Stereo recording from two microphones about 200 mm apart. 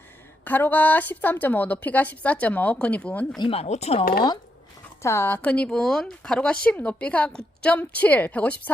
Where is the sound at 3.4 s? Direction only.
30° left (ahead or behind).